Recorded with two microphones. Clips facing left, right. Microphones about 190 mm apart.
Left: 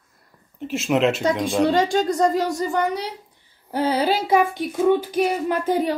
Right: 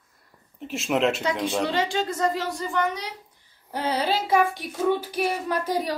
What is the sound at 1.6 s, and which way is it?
A woman's voice, 45° left (ahead or behind).